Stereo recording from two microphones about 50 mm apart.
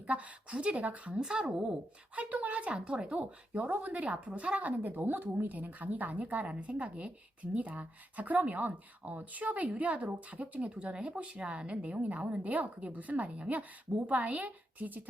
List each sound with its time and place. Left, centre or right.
0.1 s speech: right
1.2 s speech: centre
2.1 s a woman's voice: right